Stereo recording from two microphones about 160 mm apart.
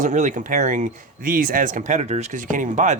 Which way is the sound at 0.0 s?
50° right (ahead or behind).